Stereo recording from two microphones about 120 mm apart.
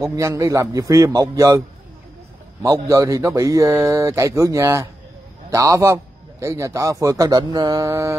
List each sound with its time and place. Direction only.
0.0 s a man's voice: 30° right (ahead or behind)
2.6 s a man's voice: 30° right (ahead or behind)